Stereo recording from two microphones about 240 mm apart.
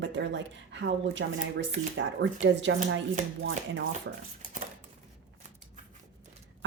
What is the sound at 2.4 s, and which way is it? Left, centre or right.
Speech, right.